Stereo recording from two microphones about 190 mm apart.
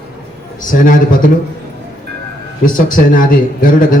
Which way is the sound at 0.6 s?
45° left (ahead or behind).